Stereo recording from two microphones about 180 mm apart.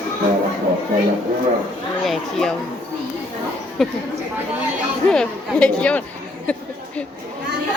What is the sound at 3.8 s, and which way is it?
Speech, centre (ahead or behind).